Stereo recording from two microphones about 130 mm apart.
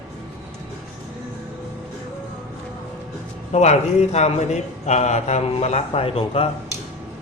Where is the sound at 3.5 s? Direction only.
60° left (ahead or behind).